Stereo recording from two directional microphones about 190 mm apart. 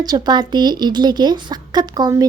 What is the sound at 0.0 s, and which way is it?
A woman's voice, 20° right (ahead or behind).